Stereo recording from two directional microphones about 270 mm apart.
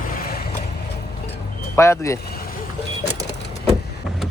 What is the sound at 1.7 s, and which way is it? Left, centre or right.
Speech, centre.